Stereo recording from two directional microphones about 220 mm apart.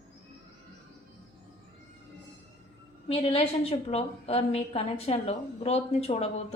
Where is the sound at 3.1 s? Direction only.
25° left (ahead or behind).